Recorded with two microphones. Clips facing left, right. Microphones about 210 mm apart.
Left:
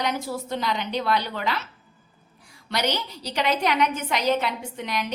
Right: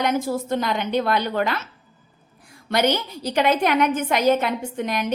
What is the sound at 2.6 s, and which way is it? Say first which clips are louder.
A woman's voice: right 6 dB; 50° right (ahead or behind).